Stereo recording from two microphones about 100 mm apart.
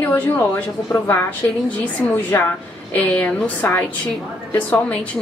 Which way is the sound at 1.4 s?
25° left (ahead or behind).